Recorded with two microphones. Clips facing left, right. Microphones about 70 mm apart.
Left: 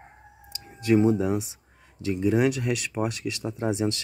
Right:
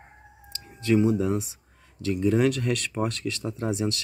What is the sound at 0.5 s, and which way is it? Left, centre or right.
Clicking, left.